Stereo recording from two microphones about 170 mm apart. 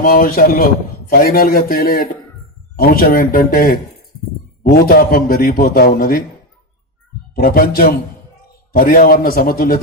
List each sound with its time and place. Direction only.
0.0 s a man's voice: 60° left (ahead or behind)
7.3 s a man's voice: 60° left (ahead or behind)